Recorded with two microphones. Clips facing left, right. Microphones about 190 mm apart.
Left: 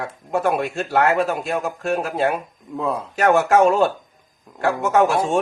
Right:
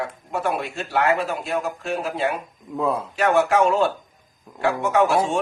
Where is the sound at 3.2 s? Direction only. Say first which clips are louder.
Left 3 dB; 45° left (ahead or behind).